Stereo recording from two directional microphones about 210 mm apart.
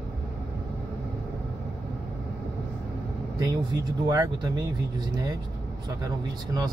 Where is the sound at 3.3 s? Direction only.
20° right (ahead or behind).